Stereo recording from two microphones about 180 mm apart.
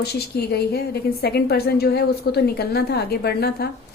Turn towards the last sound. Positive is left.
turn(degrees=60)  # may be behind; listen again after turning